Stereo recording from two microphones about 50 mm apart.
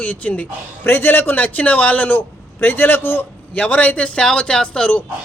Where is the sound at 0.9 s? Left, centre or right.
Left.